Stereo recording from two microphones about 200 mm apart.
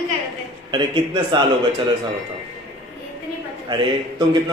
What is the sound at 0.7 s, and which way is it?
Speech, 25° right (ahead or behind).